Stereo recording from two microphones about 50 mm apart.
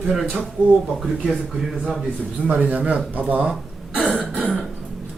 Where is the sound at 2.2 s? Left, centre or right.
Right.